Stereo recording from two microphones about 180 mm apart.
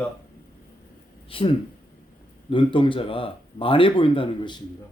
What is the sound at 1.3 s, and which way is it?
Speech, 30° left (ahead or behind).